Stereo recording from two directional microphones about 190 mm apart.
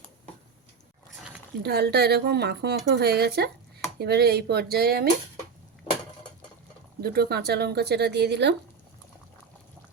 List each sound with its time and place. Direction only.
1.6 s speech: 60° right (ahead or behind)
7.0 s speech: 55° right (ahead or behind)